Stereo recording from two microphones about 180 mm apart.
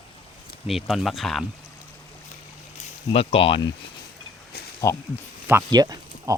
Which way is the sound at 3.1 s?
30° left (ahead or behind).